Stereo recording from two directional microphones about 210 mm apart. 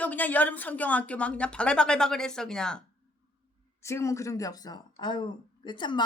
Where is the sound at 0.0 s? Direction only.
10° left (ahead or behind).